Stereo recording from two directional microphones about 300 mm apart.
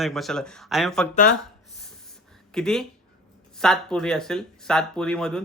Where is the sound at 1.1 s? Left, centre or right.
Left.